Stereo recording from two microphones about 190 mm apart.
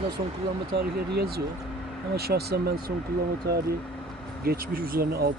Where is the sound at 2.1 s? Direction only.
55° right (ahead or behind).